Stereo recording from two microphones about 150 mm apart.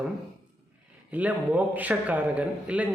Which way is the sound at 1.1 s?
10° right (ahead or behind).